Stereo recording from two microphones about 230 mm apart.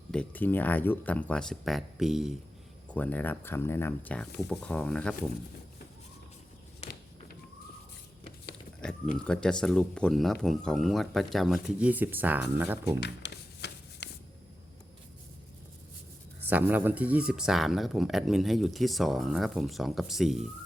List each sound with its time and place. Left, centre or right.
0.1 s speech: centre
9.1 s speech: centre
13.0 s a sound: left
16.4 s speech: centre